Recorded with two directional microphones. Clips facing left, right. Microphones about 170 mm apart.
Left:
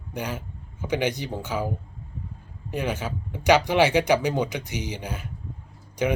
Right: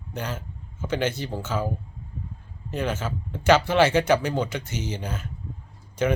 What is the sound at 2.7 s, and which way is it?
Speech, 10° left (ahead or behind).